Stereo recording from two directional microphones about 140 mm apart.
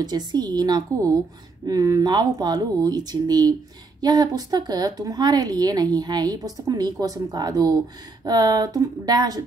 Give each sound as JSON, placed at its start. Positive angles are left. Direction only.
{"t": 0.0, "sound": "a woman's voice", "side_deg": -30}